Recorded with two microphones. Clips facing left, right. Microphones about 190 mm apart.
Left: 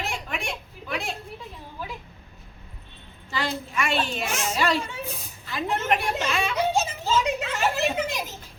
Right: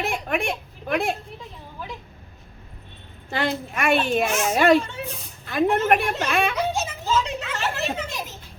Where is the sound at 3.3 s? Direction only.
55° right (ahead or behind).